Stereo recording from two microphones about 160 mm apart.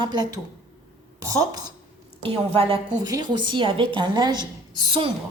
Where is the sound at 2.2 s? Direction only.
35° right (ahead or behind).